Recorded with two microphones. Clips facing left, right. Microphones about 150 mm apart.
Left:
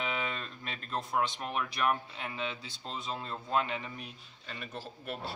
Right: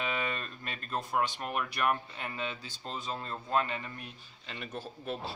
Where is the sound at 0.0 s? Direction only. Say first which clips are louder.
Right 1 dB; 5° right (ahead or behind).